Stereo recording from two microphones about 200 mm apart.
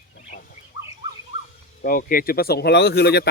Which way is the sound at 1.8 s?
45° left (ahead or behind).